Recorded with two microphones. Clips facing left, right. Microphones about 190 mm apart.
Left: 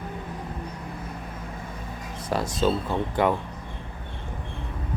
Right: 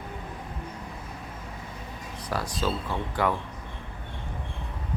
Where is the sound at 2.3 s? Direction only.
25° left (ahead or behind).